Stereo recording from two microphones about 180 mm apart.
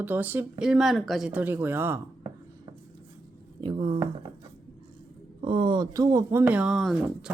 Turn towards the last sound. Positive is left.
turn(degrees=0)  # may be behind; listen again after turning